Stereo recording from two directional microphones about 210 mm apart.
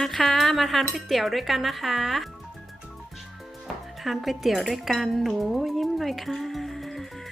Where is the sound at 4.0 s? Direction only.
Centre (ahead or behind).